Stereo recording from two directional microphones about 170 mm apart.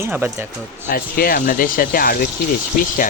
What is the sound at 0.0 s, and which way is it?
Speech, 15° right (ahead or behind).